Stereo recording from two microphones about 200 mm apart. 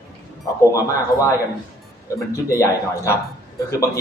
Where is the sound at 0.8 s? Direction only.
15° left (ahead or behind).